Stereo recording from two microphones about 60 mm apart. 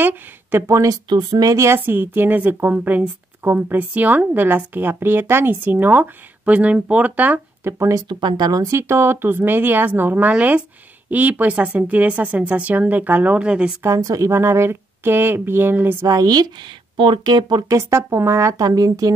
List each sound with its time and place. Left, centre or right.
0.0 s speech: right
0.7 s a woman's voice: right
1.7 s a woman's voice: right
7.6 s speech: right
8.5 s speech: right
8.7 s a woman's voice: right; by 13.7 s centre
13.8 s speech: right
14.4 s a woman's voice: right
16.1 s speech: right
17.6 s speech: right